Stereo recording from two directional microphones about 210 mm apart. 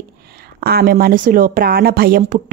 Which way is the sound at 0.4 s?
50° right (ahead or behind).